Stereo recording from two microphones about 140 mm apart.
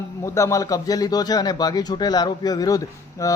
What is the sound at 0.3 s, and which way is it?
A man's voice, 20° left (ahead or behind).